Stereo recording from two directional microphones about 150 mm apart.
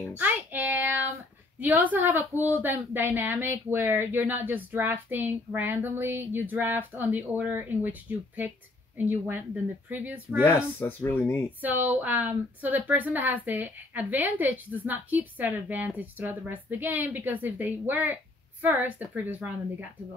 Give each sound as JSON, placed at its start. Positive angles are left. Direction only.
{"t": 0.2, "sound": "child singing", "side_deg": -10}
{"t": 1.6, "sound": "a woman's voice", "side_deg": -10}
{"t": 10.4, "sound": "speech", "side_deg": 15}
{"t": 11.6, "sound": "a woman's voice", "side_deg": -10}